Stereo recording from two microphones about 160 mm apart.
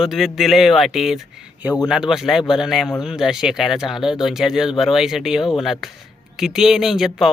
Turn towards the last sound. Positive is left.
turn(degrees=0)  # may be behind; listen again after turning